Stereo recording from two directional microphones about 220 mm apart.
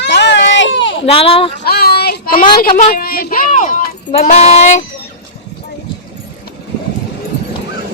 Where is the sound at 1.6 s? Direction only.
45° left (ahead or behind).